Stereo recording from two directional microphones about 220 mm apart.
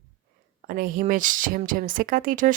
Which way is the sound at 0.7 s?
40° right (ahead or behind).